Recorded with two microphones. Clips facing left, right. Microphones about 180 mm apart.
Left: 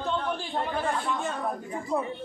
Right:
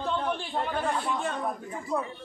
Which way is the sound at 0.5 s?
Centre (ahead or behind).